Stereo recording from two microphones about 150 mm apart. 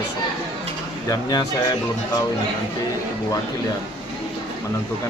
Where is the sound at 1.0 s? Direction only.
25° left (ahead or behind).